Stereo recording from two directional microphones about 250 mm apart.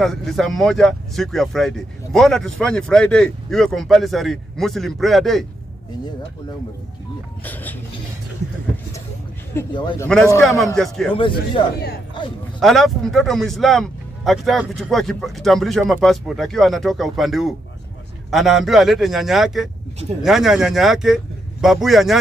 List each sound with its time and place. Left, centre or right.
0.0 s speech: centre
7.4 s speech: centre
9.5 s speech: centre
10.0 s speech: centre
11.1 s speech: centre
12.5 s speech: centre